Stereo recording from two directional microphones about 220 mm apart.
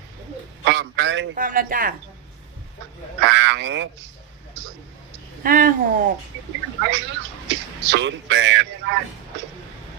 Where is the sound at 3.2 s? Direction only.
55° right (ahead or behind).